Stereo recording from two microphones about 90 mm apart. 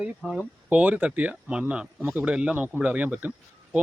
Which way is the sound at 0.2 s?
5° right (ahead or behind).